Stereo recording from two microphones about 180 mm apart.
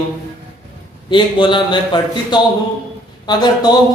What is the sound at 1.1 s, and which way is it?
A man's voice, 25° left (ahead or behind).